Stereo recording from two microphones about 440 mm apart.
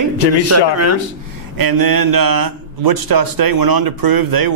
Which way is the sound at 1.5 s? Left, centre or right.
Right.